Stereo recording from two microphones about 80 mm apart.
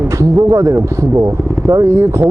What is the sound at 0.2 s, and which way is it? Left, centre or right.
Speech, right.